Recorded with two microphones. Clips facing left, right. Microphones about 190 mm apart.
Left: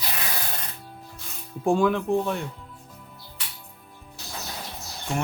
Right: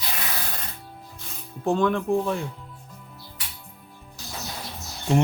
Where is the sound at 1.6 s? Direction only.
10° left (ahead or behind).